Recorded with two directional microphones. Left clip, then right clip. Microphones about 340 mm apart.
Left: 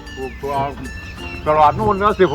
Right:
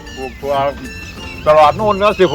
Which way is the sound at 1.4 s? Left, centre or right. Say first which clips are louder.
Right 4 dB; right.